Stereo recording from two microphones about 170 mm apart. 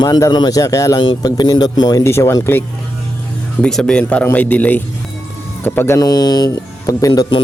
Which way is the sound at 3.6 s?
5° left (ahead or behind).